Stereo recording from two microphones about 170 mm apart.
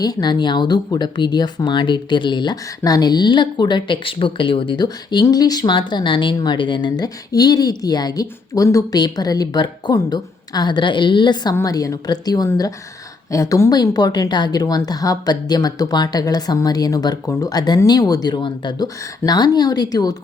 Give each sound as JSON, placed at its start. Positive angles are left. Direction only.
{"t": 0.0, "sound": "speech", "side_deg": 25}